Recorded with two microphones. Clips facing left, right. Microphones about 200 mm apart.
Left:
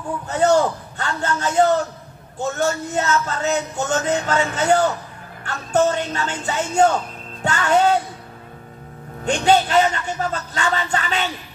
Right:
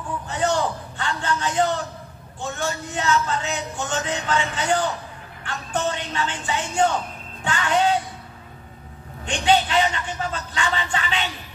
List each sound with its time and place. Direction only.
0.3 s a sound: 40° left (ahead or behind)
2.3 s a man's voice: 40° left (ahead or behind)
9.2 s a man's voice: 40° left (ahead or behind)